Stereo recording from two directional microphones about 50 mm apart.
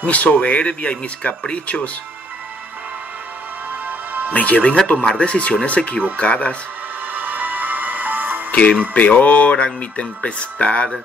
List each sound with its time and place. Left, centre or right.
0.0 s speech: left
3.8 s music: right
4.3 s speech: left
4.9 s speech: centre
5.7 s speech: left
7.1 s music: right
8.5 s speech: left